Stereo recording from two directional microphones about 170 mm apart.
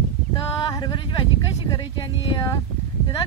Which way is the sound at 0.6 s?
25° left (ahead or behind).